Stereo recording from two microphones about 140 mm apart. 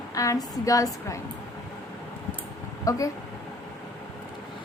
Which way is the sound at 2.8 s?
25° left (ahead or behind).